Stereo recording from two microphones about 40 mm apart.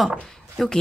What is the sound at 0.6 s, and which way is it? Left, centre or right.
Speech, centre.